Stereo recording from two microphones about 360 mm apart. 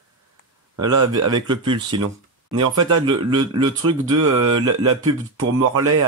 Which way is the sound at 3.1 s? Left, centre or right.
Centre.